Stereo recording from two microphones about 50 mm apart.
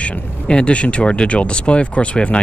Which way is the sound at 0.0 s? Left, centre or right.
Left.